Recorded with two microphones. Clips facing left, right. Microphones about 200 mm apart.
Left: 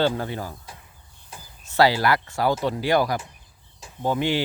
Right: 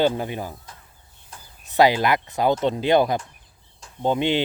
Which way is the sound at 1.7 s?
20° right (ahead or behind).